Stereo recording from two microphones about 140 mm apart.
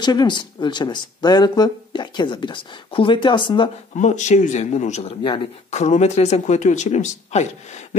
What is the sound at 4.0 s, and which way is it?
Speech, 60° left (ahead or behind).